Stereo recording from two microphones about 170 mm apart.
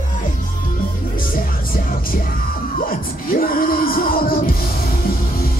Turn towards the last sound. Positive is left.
turn(degrees=60)  # may be behind; listen again after turning